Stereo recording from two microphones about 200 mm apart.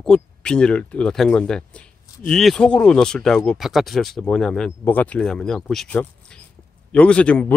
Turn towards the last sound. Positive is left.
turn(degrees=5)  # may be behind; listen again after turning